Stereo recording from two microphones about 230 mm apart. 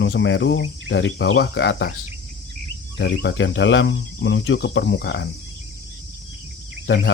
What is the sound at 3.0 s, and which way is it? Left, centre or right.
Speech, left.